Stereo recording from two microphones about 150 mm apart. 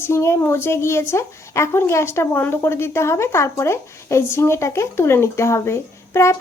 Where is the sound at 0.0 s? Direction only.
15° left (ahead or behind).